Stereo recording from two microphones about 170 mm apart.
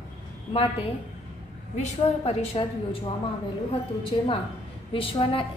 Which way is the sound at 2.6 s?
30° left (ahead or behind).